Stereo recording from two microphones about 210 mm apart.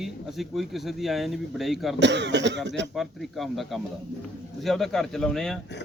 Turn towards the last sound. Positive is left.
turn(degrees=0)  # may be behind; listen again after turning